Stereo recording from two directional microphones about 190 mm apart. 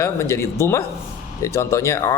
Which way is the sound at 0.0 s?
15° left (ahead or behind).